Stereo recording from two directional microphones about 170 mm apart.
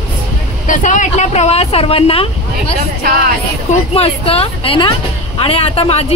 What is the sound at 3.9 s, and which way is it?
A woman's voice, 35° left (ahead or behind).